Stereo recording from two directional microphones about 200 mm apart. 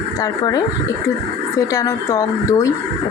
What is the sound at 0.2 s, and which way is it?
Speech, 20° left (ahead or behind).